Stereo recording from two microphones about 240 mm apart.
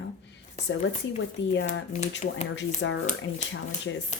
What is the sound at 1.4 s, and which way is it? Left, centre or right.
Speech, left.